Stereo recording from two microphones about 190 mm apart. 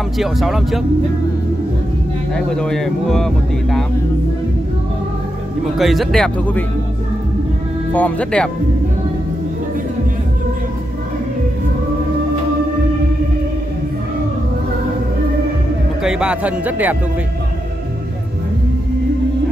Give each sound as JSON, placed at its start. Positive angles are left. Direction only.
{"t": 0.2, "sound": "speech", "side_deg": 0}
{"t": 2.3, "sound": "speech", "side_deg": 5}
{"t": 5.8, "sound": "speech", "side_deg": 0}
{"t": 7.9, "sound": "speech", "side_deg": 5}
{"t": 16.0, "sound": "speech", "side_deg": -5}